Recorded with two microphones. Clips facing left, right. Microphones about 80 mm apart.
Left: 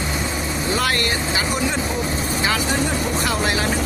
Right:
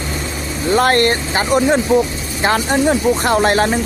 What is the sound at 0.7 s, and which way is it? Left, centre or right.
Speech, right.